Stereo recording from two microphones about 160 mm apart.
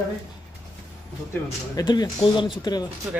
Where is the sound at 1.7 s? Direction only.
25° left (ahead or behind).